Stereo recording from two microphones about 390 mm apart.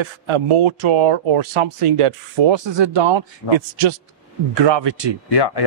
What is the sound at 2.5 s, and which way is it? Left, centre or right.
Speech, right.